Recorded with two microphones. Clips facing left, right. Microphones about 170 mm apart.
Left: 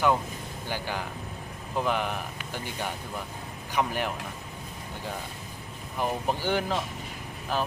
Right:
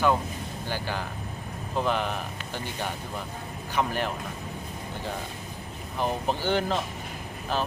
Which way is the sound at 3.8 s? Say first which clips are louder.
Right 1 dB; 15° left (ahead or behind).